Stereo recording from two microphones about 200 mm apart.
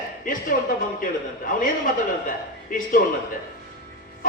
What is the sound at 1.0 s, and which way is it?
Speech, 45° left (ahead or behind).